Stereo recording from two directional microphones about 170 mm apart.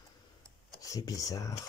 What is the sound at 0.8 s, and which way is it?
Speech, 20° left (ahead or behind).